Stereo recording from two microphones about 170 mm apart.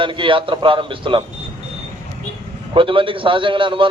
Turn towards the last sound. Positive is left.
turn(degrees=-30)  # may be behind; listen again after turning